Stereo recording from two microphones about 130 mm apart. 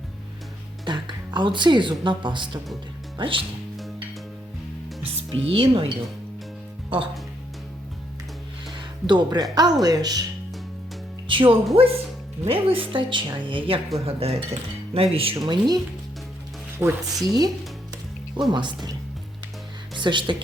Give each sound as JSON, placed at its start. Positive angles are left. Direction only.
{"t": 0.9, "sound": "a woman's voice", "side_deg": -35}
{"t": 5.1, "sound": "speech", "side_deg": -45}
{"t": 8.7, "sound": "speech", "side_deg": -35}
{"t": 11.3, "sound": "a woman's voice", "side_deg": -40}
{"t": 15.4, "sound": "a woman's voice", "side_deg": -30}
{"t": 16.7, "sound": "speech", "side_deg": -20}
{"t": 17.2, "sound": "a woman's voice", "side_deg": -30}
{"t": 19.9, "sound": "speech", "side_deg": -35}